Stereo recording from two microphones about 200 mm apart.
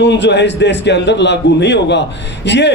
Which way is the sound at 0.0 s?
60° left (ahead or behind).